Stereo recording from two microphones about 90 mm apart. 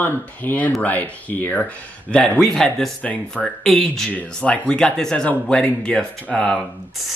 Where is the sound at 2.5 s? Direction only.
10° left (ahead or behind).